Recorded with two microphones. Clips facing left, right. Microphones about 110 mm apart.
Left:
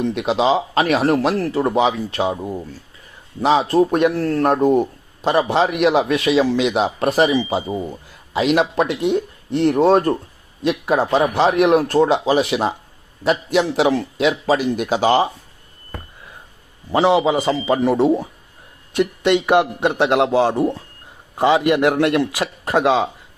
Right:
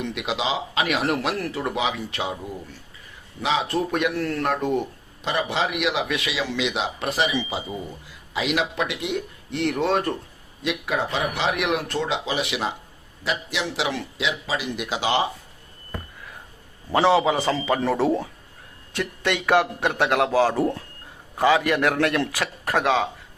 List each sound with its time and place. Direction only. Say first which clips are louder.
0.0 s a man's voice: left 9 dB; 35° left (ahead or behind)
16.9 s a man's voice: left 3 dB; 20° left (ahead or behind)